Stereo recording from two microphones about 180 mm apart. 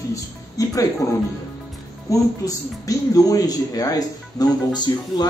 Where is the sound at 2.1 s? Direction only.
20° left (ahead or behind).